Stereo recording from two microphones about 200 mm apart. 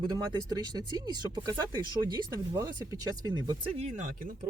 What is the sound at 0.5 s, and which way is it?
Speech, 20° right (ahead or behind).